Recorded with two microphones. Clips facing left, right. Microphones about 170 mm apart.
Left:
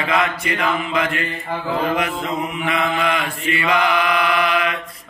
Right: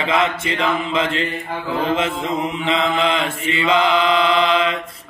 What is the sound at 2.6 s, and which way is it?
Mantra, 25° right (ahead or behind).